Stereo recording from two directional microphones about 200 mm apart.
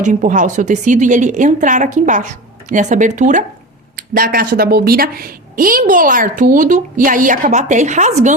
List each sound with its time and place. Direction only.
0.0 s a woman's voice: 40° right (ahead or behind)